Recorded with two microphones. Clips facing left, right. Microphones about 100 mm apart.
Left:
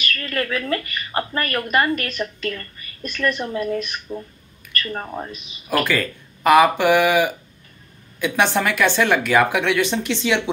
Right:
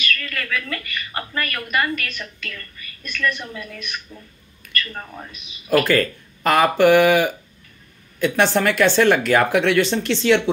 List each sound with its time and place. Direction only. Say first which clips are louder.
0.0 s a woman's voice: left 3 dB; 35° left (ahead or behind)
6.4 s speech: left 1 dB; 10° left (ahead or behind)